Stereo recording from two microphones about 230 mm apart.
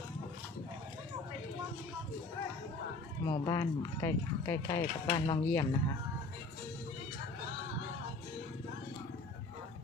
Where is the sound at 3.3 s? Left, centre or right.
Centre.